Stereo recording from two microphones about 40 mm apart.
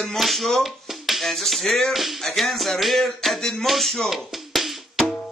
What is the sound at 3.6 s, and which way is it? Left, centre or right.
Speech, centre.